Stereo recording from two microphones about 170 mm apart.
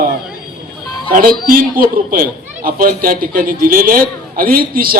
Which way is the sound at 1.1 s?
55° right (ahead or behind).